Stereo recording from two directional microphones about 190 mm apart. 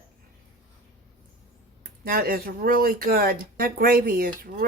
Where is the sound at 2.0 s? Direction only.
50° right (ahead or behind).